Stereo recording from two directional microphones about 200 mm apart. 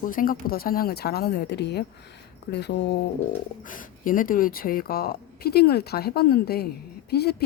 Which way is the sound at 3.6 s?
45° left (ahead or behind).